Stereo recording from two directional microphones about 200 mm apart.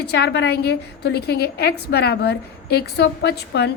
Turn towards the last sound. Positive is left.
turn(degrees=55)  # may be behind; listen again after turning